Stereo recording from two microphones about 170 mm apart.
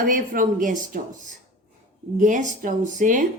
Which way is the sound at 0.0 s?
55° right (ahead or behind).